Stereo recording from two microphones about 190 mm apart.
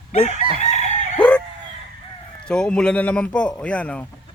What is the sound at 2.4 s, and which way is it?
A man's voice, 5° left (ahead or behind).